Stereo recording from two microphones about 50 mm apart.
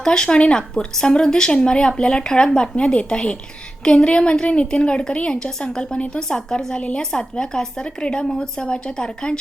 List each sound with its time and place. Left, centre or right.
0.0 s a woman's voice: centre